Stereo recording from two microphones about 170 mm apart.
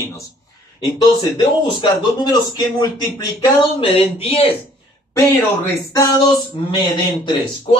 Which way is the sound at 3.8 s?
35° left (ahead or behind).